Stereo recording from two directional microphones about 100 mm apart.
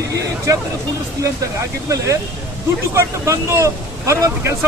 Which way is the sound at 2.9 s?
30° right (ahead or behind).